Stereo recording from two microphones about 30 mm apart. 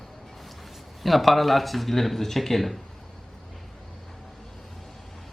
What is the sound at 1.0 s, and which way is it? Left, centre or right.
Speech, centre.